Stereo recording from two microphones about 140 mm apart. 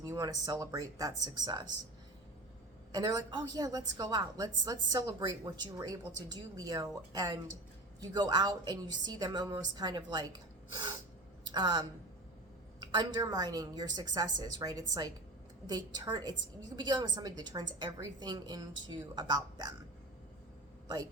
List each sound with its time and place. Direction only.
0.0 s a woman's voice: 25° right (ahead or behind)
2.9 s a woman's voice: 25° right (ahead or behind)
11.4 s a woman's voice: 30° right (ahead or behind)
20.8 s a woman's voice: 30° right (ahead or behind)